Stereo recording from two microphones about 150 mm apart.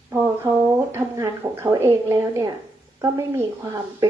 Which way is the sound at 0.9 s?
20° right (ahead or behind).